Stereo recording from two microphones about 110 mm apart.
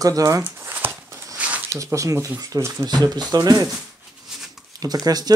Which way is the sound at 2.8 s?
40° right (ahead or behind).